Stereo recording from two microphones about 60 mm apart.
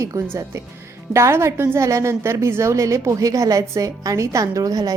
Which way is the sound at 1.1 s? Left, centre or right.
Right.